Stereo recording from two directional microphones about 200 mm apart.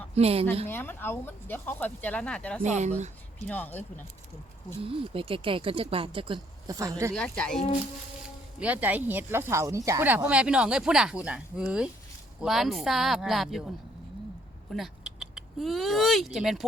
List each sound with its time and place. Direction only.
0.1 s a woman's voice: 30° right (ahead or behind)
0.7 s speech: 10° left (ahead or behind)
2.6 s speech: 35° right (ahead or behind)
3.4 s speech: 10° left (ahead or behind)
4.8 s speech: 25° right (ahead or behind)
7.1 s speech: 5° left (ahead or behind)
8.5 s speech: 5° right (ahead or behind)
14.7 s speech: centre (ahead or behind)